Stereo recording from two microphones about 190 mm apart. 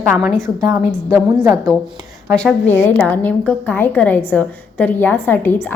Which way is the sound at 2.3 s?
5° left (ahead or behind).